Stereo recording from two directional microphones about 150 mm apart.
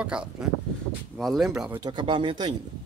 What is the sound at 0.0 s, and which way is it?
Speech, 5° right (ahead or behind).